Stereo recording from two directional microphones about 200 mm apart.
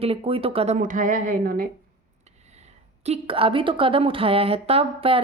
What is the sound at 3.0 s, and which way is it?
Speech, 30° right (ahead or behind).